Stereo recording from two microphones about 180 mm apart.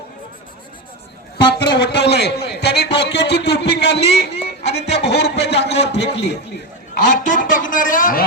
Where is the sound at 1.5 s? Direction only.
70° left (ahead or behind).